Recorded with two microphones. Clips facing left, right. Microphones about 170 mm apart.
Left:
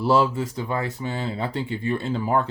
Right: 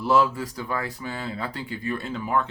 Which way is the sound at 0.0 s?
30° left (ahead or behind).